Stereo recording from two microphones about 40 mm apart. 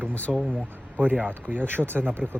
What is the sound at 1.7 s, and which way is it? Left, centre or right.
Speech, right.